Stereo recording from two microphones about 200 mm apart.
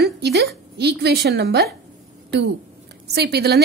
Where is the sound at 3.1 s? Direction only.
55° right (ahead or behind).